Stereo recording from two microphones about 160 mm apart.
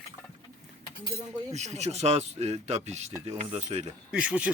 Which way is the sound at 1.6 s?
45° right (ahead or behind).